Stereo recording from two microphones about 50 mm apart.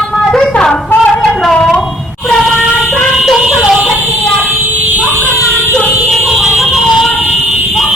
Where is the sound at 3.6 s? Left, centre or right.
Right.